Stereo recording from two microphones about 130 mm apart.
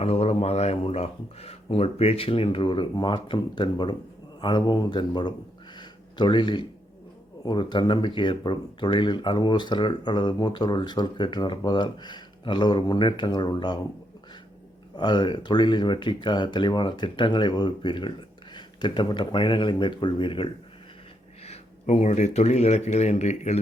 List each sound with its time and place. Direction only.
0.0 s speech: 50° left (ahead or behind)
5.7 s a sound: 35° left (ahead or behind)
7.4 s speech: 35° left (ahead or behind)
14.9 s speech: 35° left (ahead or behind)
21.4 s speech: 55° left (ahead or behind)